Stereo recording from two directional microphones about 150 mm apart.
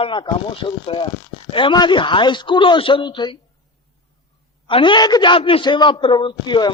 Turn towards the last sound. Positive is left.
turn(degrees=30)  # may be behind; listen again after turning